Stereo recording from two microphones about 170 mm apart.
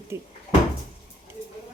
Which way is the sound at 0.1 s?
15° right (ahead or behind).